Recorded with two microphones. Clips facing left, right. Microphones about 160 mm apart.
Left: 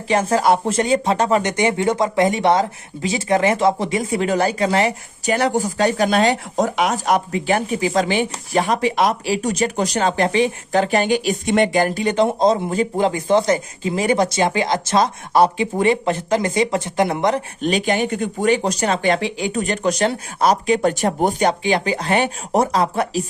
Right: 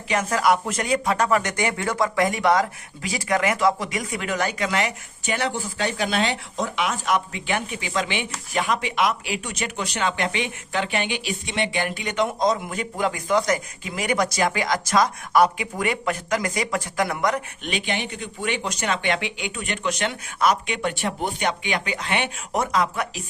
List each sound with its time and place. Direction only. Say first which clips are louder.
0.1 s speech: left 5 dB; 30° left (ahead or behind)